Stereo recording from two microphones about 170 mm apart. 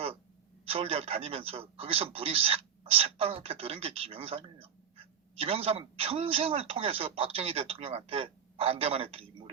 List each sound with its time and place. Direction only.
0.7 s speech: 35° right (ahead or behind)